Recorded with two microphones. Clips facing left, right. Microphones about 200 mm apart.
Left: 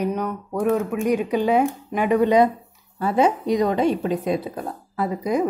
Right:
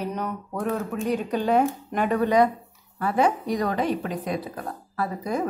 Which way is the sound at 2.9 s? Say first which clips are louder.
Left 3 dB; 25° left (ahead or behind).